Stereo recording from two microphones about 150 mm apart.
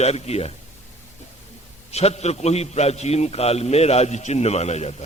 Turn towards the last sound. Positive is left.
turn(degrees=45)  # may be behind; listen again after turning